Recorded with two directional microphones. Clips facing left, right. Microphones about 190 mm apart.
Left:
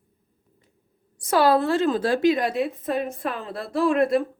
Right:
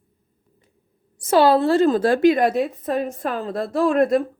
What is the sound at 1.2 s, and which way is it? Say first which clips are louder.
A woman's voice: right 4 dB; 25° right (ahead or behind).